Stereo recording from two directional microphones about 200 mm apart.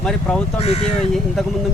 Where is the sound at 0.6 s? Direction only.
30° left (ahead or behind).